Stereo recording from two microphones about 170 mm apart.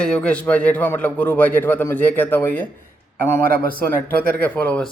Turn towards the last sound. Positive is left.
turn(degrees=10)  # may be behind; listen again after turning